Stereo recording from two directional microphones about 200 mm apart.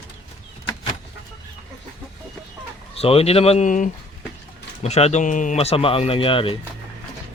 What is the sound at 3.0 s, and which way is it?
Speech, 30° left (ahead or behind).